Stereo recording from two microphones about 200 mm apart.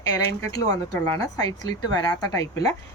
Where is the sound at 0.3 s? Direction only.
20° left (ahead or behind).